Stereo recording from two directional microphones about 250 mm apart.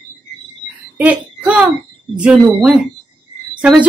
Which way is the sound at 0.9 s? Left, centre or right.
Centre.